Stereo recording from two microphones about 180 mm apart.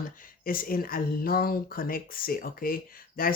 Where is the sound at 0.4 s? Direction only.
55° left (ahead or behind).